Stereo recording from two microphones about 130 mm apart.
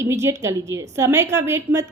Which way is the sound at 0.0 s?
20° right (ahead or behind).